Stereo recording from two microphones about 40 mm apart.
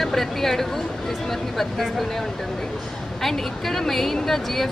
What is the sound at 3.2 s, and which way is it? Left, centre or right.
Speech, centre.